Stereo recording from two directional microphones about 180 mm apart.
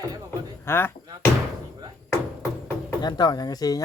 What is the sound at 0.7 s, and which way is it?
Speech, 10° left (ahead or behind).